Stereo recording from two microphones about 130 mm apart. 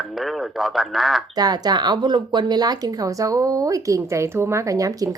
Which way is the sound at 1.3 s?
30° right (ahead or behind).